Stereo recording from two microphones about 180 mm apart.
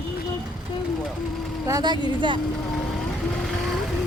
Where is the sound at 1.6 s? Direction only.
20° right (ahead or behind).